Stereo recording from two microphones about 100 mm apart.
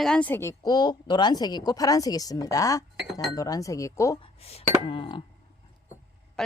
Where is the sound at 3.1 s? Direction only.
Centre (ahead or behind).